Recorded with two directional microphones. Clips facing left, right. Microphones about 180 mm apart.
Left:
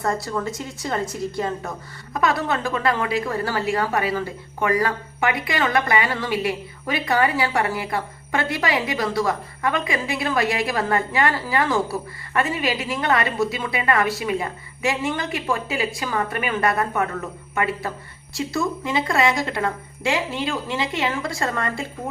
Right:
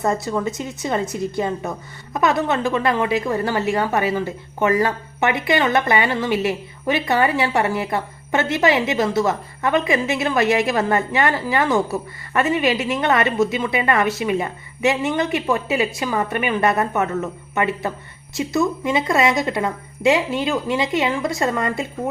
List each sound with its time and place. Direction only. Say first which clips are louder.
0.0 s a woman's voice: right 3 dB; 20° right (ahead or behind)